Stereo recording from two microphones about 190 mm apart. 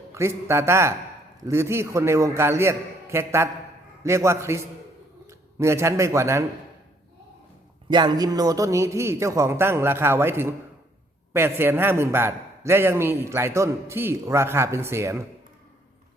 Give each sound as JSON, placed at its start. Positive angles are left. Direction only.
{"t": 0.1, "sound": "a man's voice", "side_deg": -15}
{"t": 7.9, "sound": "a man's voice", "side_deg": -20}